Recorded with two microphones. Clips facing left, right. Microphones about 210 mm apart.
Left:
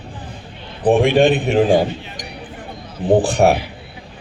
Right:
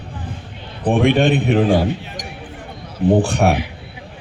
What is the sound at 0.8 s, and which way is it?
Speech, 30° left (ahead or behind).